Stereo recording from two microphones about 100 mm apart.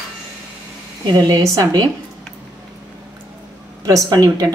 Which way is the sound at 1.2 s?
40° right (ahead or behind).